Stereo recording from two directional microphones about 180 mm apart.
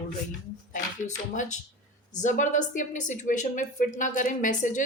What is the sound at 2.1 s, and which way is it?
A woman's voice, 45° left (ahead or behind).